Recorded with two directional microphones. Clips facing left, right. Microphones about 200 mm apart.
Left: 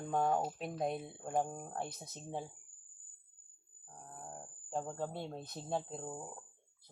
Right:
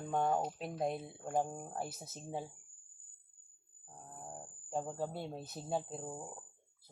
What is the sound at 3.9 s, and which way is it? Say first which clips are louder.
Speech: even; centre (ahead or behind).